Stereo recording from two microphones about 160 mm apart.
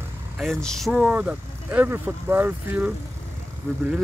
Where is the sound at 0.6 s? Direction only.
Centre (ahead or behind).